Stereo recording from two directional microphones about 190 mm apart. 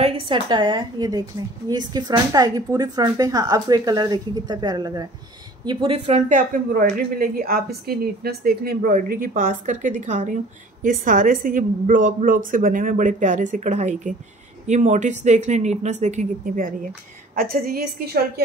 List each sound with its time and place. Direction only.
0.0 s a woman's voice: 30° right (ahead or behind); by 18.2 s 55° right (ahead or behind)